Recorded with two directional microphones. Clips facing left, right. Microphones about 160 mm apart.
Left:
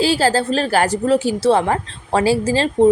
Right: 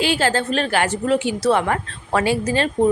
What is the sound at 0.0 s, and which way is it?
A woman's voice, 35° left (ahead or behind).